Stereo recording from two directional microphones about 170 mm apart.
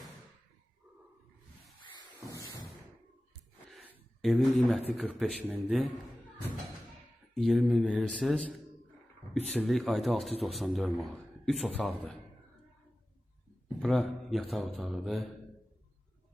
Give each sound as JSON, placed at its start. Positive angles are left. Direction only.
{"t": 2.3, "sound": "music", "side_deg": 20}
{"t": 4.2, "sound": "speech", "side_deg": 0}
{"t": 7.3, "sound": "speech", "side_deg": 0}
{"t": 13.7, "sound": "a man's voice", "side_deg": 0}